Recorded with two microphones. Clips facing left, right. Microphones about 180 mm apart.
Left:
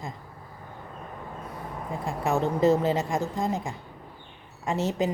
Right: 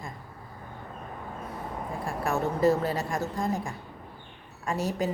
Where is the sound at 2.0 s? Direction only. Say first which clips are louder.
Left 3 dB; 20° left (ahead or behind).